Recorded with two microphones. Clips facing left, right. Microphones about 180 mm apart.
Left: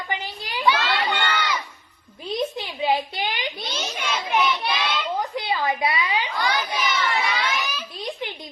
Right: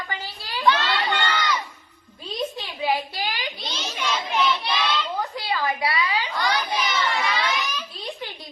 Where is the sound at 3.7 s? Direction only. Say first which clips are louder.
Left 2 dB; 50° left (ahead or behind).